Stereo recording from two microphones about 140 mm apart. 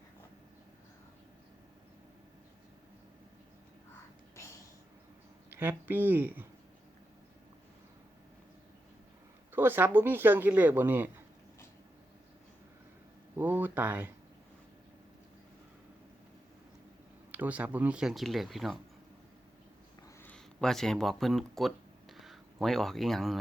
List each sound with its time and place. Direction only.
5.5 s speech: 15° right (ahead or behind)
9.5 s speech: 15° right (ahead or behind)
13.3 s speech: 15° right (ahead or behind)
17.3 s speech: 10° right (ahead or behind)
20.2 s speech: 5° left (ahead or behind)